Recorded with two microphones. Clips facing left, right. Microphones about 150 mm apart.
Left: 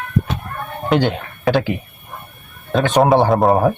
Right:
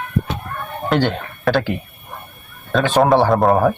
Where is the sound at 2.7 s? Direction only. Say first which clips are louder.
Left 1 dB; 20° left (ahead or behind).